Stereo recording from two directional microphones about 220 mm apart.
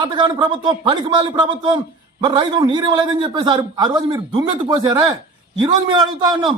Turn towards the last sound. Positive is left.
turn(degrees=-20)  # may be behind; listen again after turning